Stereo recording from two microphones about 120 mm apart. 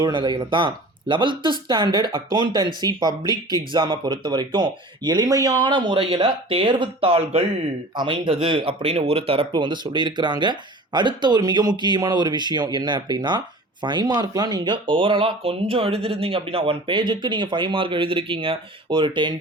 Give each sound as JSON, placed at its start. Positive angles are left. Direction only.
{"t": 0.0, "sound": "speech", "side_deg": -40}
{"t": 7.9, "sound": "speech", "side_deg": -40}